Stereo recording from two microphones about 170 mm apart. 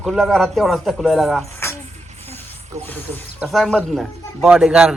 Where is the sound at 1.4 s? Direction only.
15° left (ahead or behind).